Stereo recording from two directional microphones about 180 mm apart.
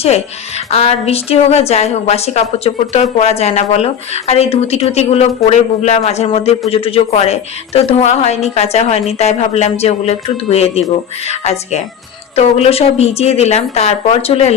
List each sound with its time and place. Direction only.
0.0 s speech: 35° left (ahead or behind)